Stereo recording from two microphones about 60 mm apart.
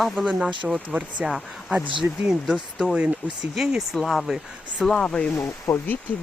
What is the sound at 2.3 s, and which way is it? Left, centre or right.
Speech, centre.